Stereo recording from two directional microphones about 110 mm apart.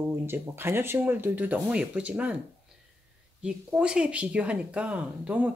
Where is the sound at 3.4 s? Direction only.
10° right (ahead or behind).